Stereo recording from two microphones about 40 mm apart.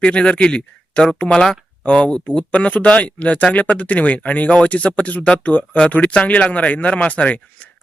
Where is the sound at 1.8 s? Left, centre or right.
Left.